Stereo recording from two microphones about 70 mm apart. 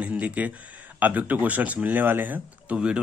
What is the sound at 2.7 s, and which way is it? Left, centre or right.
Speech, centre.